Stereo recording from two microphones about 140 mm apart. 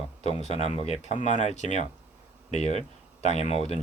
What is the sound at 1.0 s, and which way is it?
Speech, 60° left (ahead or behind).